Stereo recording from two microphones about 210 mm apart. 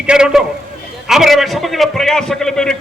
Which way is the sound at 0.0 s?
5° right (ahead or behind).